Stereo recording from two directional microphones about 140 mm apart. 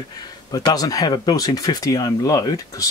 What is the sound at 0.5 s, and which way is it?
Speech, 25° left (ahead or behind).